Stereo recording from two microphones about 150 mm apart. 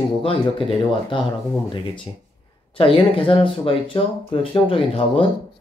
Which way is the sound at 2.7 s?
35° left (ahead or behind).